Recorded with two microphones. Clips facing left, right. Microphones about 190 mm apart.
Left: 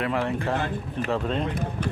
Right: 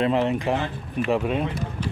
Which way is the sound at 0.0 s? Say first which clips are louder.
Right 4 dB; 20° right (ahead or behind).